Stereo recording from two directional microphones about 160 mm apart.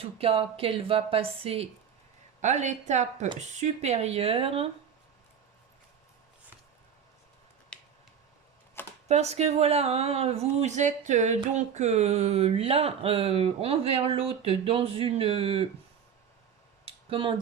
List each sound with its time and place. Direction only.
0.0 s speech: 35° right (ahead or behind)
2.4 s speech: 50° right (ahead or behind)
7.7 s finger snapping: 5° left (ahead or behind)
9.0 s speech: 45° right (ahead or behind)
16.8 s a sound: 35° right (ahead or behind)